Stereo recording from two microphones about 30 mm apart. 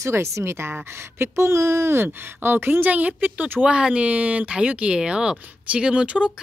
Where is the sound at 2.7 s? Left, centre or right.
Right.